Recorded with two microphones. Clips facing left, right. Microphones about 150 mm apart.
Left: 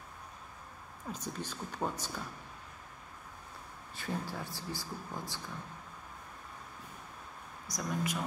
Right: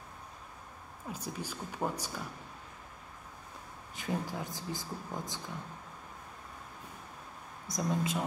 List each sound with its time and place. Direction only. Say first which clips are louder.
1.1 s speech: right 1 dB; 10° right (ahead or behind)
3.9 s speech: right 3 dB; 15° right (ahead or behind)
7.6 s speech: right 3 dB; 25° right (ahead or behind)